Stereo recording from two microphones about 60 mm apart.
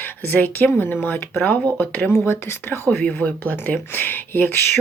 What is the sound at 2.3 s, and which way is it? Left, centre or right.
Speech, left.